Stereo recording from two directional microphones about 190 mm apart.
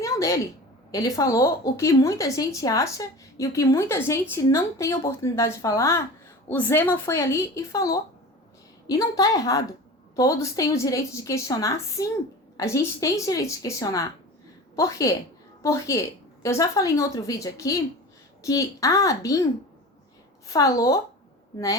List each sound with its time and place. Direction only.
0.0 s a sound: 15° left (ahead or behind)
0.9 s a woman's voice: 15° left (ahead or behind)
20.5 s speech: 15° left (ahead or behind)